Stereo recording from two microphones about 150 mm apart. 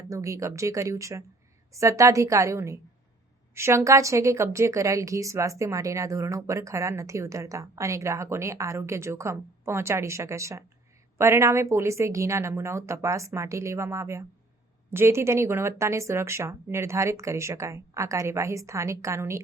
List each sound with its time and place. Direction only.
0.1 s a woman's voice: 20° right (ahead or behind)